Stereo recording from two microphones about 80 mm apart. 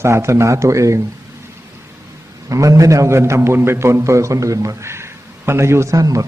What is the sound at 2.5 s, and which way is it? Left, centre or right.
A man's voice, right.